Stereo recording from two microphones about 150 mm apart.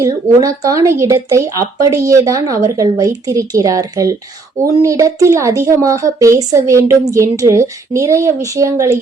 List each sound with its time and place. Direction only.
0.0 s speech: 20° right (ahead or behind)